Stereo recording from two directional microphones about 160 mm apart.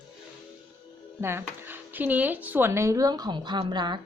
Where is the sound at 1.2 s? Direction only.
15° right (ahead or behind).